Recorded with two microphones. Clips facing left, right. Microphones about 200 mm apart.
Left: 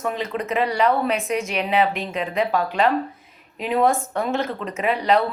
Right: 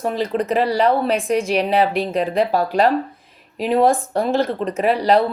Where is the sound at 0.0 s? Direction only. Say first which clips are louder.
Right 5 dB; 35° right (ahead or behind).